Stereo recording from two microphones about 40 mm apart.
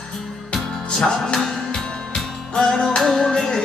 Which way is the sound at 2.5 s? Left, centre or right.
Centre.